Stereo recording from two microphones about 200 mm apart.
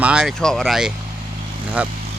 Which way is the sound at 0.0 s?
5° right (ahead or behind).